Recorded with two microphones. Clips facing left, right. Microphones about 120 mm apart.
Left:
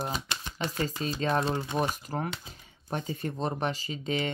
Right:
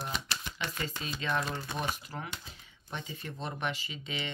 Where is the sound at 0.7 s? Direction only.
40° left (ahead or behind).